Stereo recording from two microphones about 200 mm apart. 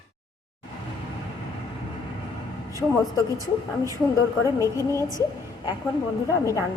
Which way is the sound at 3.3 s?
15° right (ahead or behind).